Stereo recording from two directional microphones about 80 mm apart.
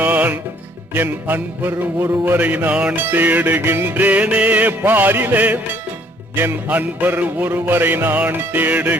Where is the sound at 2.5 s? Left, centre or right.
Centre.